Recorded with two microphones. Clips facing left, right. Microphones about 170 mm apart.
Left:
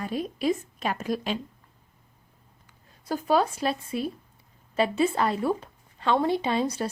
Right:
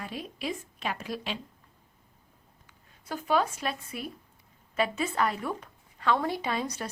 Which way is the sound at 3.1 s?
35° left (ahead or behind).